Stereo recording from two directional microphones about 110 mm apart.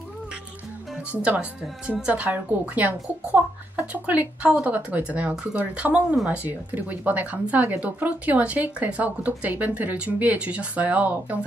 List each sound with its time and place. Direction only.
1.1 s speech: 15° right (ahead or behind)